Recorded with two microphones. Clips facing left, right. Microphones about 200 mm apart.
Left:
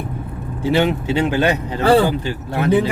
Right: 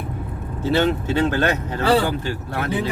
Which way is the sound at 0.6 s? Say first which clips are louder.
Left 2 dB; 15° left (ahead or behind).